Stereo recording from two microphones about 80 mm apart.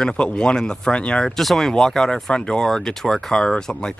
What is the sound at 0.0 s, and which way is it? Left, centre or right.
Speech, centre.